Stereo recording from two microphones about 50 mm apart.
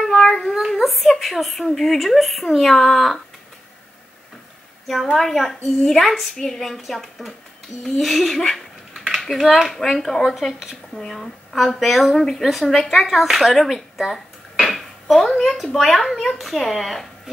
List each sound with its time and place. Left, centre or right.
0.1 s child singing: centre
0.6 s a sound: centre
1.2 s a woman's voice: centre
5.1 s a woman's voice: centre
8.9 s a sound: centre
9.4 s speech: centre
9.7 s a woman's voice: centre